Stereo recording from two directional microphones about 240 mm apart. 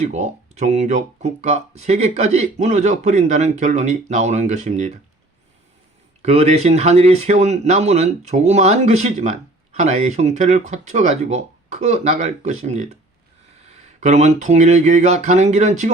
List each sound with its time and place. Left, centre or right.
0.0 s speech: right
6.2 s speech: right